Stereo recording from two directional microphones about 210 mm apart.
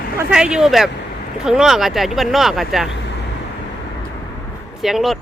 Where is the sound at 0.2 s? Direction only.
5° right (ahead or behind).